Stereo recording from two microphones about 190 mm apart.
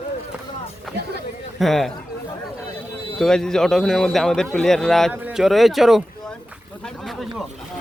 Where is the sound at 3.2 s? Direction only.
5° left (ahead or behind).